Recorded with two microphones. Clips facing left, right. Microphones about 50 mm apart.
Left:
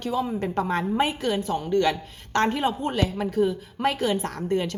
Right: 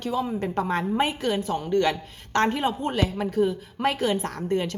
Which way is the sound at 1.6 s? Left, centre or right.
Right.